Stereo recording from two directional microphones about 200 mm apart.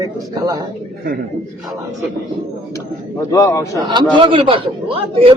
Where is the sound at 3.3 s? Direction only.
15° left (ahead or behind).